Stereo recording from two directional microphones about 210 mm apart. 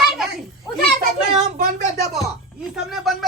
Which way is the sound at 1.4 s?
35° right (ahead or behind).